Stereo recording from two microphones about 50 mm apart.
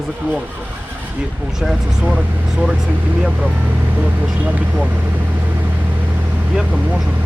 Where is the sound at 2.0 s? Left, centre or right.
Right.